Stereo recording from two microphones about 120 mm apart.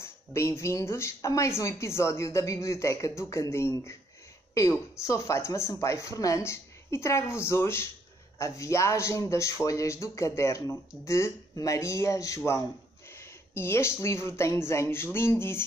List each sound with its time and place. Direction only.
0.0 s speech: 25° left (ahead or behind)